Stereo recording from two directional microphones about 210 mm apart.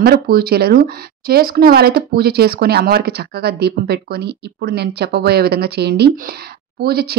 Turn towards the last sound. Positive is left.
turn(degrees=-50)  # may be behind; listen again after turning